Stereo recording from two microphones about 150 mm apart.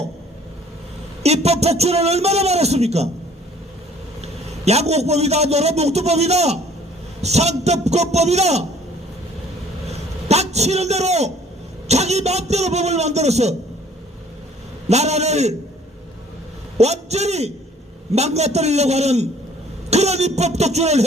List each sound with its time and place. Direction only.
1.2 s a man's voice: 45° right (ahead or behind)
4.2 s a man's voice: 45° right (ahead or behind)
9.8 s a man's voice: 45° right (ahead or behind)
14.8 s a man's voice: 45° right (ahead or behind)
16.7 s a man's voice: 45° right (ahead or behind)